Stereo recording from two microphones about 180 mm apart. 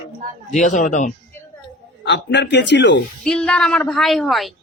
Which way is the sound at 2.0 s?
75° left (ahead or behind).